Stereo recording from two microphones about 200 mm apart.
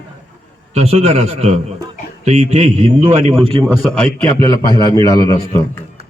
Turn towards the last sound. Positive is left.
turn(degrees=20)  # may be behind; listen again after turning